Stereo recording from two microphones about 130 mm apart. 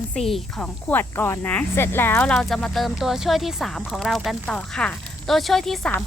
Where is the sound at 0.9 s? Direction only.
15° left (ahead or behind).